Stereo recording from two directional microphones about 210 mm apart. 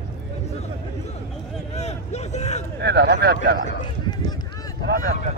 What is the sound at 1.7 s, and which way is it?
Speech, 30° left (ahead or behind).